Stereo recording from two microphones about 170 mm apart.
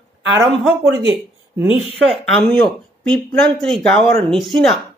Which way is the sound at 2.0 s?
Centre (ahead or behind).